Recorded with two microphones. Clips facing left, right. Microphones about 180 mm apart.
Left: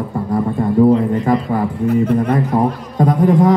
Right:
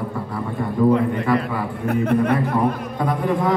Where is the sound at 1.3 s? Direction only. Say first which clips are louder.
Left 3 dB; 45° left (ahead or behind).